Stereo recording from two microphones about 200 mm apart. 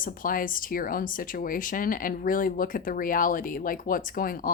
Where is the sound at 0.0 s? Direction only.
45° left (ahead or behind).